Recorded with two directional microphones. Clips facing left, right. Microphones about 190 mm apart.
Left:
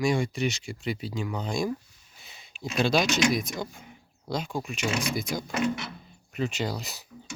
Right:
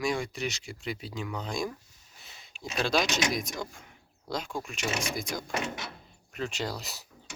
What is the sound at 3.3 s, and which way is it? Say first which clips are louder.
Speech: left 4 dB; centre (ahead or behind).